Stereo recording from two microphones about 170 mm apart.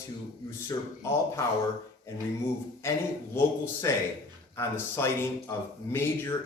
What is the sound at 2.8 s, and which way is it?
Speech, 15° left (ahead or behind).